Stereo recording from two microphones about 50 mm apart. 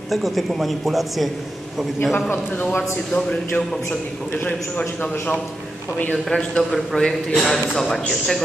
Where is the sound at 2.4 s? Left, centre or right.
Left.